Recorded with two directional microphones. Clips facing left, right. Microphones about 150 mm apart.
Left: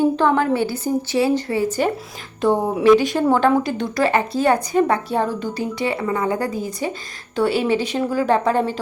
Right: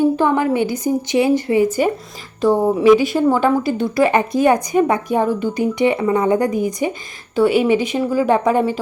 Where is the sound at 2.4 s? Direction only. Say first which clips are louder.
Right 3 dB; centre (ahead or behind).